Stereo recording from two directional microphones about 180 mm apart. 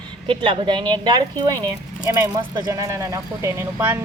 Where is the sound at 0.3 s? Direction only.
30° right (ahead or behind).